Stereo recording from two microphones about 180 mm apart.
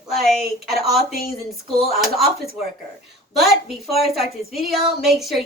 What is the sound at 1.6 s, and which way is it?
Speech, 35° left (ahead or behind).